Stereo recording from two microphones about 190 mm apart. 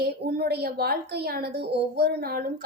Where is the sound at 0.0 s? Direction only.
55° right (ahead or behind).